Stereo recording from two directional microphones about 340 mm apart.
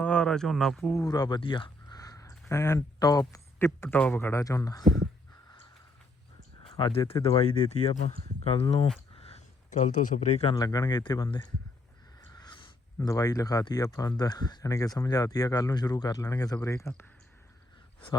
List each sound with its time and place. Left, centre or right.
0.0 s speech: centre
6.7 s speech: centre
9.1 s a sound: centre
10.2 s speech: centre